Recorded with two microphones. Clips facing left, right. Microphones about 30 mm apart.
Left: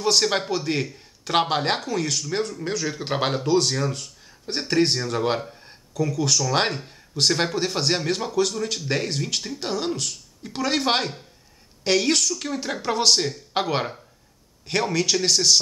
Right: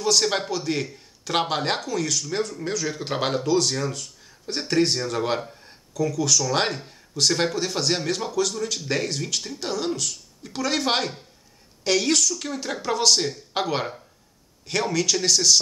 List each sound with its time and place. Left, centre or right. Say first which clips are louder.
0.2 s speech: left 1 dB; centre
0.5 s speech: left 1 dB; left
0.7 s speech: left 2 dB; centre
4.6 s speech: left 1 dB; centre
8.3 s speech: left 2 dB; centre